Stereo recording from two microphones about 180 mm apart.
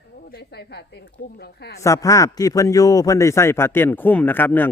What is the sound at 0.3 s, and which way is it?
Speech, 60° left (ahead or behind).